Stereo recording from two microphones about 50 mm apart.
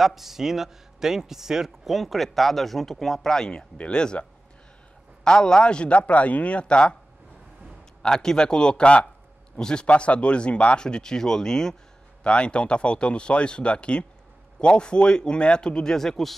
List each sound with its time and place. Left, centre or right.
0.0 s a man's voice: centre; by 7.0 s left
8.0 s speech: centre